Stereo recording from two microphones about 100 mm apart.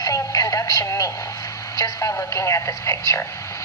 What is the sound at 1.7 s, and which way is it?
Speech, 35° left (ahead or behind).